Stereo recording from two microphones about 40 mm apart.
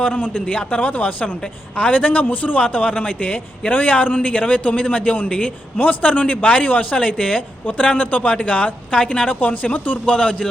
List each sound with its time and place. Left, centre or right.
0.2 s a man's voice: left
0.8 s a man's voice: left
2.6 s a man's voice: left
8.9 s a woman's voice: left
9.2 s a man's voice: left
10.1 s a woman's voice: left